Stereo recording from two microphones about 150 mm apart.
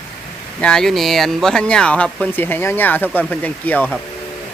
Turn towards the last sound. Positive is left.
turn(degrees=10)  # may be behind; listen again after turning